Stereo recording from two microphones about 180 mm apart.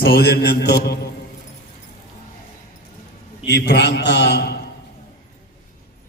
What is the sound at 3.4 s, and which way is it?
A man's voice, 70° left (ahead or behind).